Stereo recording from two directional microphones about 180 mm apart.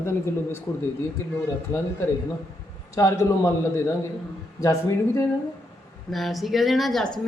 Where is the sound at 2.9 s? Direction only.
15° left (ahead or behind).